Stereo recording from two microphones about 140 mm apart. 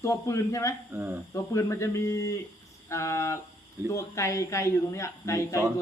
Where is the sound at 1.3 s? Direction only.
20° left (ahead or behind).